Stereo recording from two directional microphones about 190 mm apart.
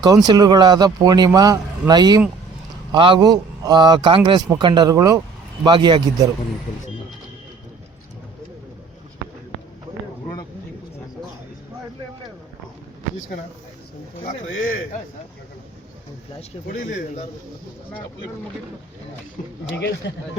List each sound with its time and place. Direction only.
0.0 s a man's voice: 20° right (ahead or behind)
16.6 s speech: 45° left (ahead or behind)
20.0 s speech: 65° left (ahead or behind)